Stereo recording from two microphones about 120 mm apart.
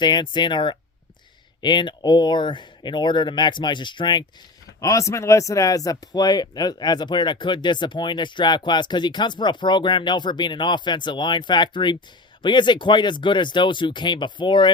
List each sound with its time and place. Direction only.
0.0 s speech: 40° left (ahead or behind)
4.8 s speech: 25° left (ahead or behind)